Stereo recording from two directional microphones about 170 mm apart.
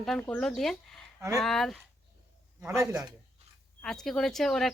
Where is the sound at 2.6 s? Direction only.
15° right (ahead or behind).